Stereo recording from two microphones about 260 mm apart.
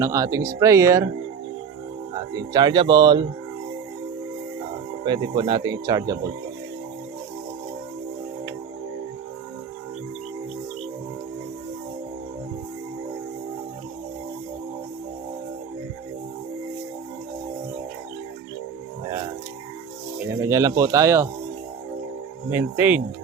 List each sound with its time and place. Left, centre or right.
0.0 s speech: centre
2.5 s speech: centre
5.0 s speech: centre
20.1 s speech: centre
22.4 s speech: centre